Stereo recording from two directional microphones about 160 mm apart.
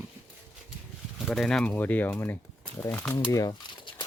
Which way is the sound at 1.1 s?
Centre (ahead or behind).